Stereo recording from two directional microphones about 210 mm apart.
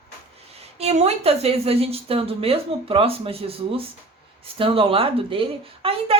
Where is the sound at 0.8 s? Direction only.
30° right (ahead or behind).